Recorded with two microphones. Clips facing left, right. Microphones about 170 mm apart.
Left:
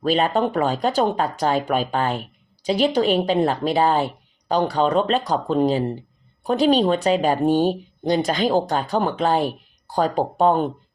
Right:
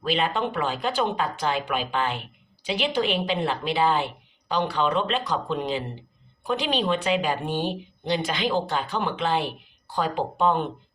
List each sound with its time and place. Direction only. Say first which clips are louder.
0.0 s a woman's voice: left 6 dB; 40° left (ahead or behind)